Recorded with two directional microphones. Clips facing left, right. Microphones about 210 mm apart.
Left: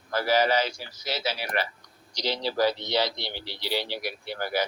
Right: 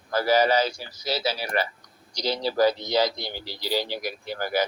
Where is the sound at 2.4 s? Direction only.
45° right (ahead or behind).